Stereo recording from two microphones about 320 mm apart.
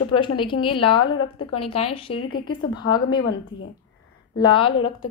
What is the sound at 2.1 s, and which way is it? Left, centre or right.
Speech, left.